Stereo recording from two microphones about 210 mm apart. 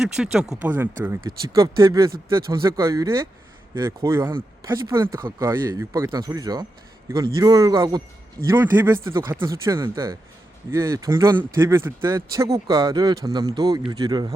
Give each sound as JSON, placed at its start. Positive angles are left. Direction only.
{"t": 0.0, "sound": "speech", "side_deg": -5}